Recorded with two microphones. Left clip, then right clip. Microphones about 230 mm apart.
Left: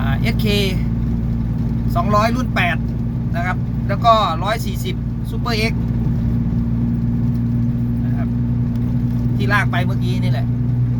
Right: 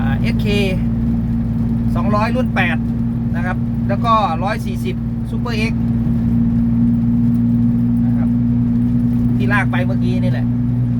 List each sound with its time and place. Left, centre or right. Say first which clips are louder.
0.4 s speech: even; centre
2.0 s speech: left 1 dB; left
4.0 s speech: left 2 dB; centre
9.5 s speech: left 1 dB; centre